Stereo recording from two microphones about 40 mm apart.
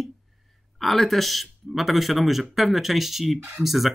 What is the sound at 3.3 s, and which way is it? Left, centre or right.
Speech, right.